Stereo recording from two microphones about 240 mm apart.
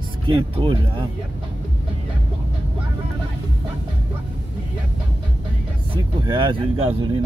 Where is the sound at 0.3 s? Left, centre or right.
Right.